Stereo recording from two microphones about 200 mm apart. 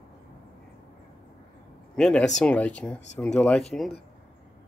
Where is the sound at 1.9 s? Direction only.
5° left (ahead or behind).